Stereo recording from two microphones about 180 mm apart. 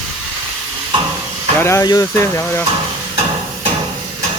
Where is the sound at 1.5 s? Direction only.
15° left (ahead or behind).